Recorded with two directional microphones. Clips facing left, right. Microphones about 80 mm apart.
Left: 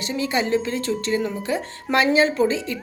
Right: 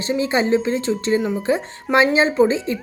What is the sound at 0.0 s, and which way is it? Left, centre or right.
A woman's voice, right.